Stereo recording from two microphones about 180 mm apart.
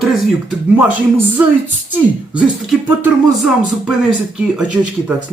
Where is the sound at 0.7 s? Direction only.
10° right (ahead or behind).